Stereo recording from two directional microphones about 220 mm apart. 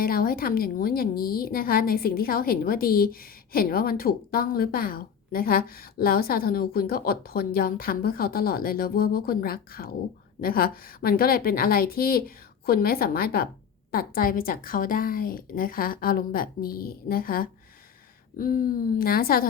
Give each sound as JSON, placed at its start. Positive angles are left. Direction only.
{"t": 0.0, "sound": "a woman's voice", "side_deg": 40}